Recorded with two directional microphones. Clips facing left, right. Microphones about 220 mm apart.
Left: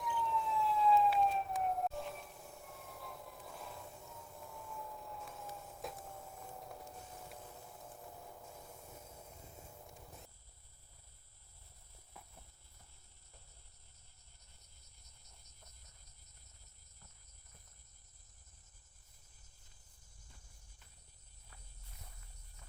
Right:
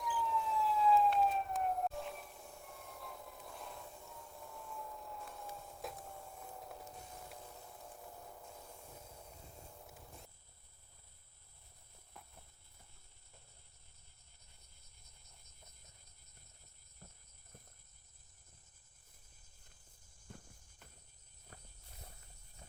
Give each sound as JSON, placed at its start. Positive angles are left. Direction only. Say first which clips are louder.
{"t": 0.0, "sound": "emergency vehicle", "louder": "even", "side_deg": 0}
{"t": 5.5, "sound": "a sound", "louder": "even", "side_deg": 0}
{"t": 7.4, "sound": "vehicle", "louder": "even", "side_deg": 5}
{"t": 12.1, "sound": "a sound", "louder": "even", "side_deg": 5}
{"t": 20.2, "sound": "music", "louder": "right 13 dB", "side_deg": -55}
{"t": 21.5, "sound": "cricket", "louder": "right 6 dB", "side_deg": -50}